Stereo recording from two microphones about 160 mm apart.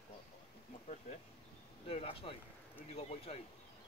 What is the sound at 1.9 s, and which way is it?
Speech, 35° left (ahead or behind).